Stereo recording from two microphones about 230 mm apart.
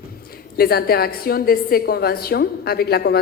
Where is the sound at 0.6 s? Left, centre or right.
Left.